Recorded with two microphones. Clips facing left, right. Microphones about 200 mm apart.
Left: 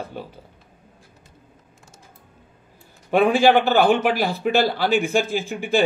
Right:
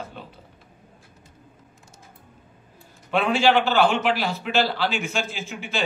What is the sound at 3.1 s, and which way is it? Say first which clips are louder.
A man's voice: left 4 dB; 50° left (ahead or behind).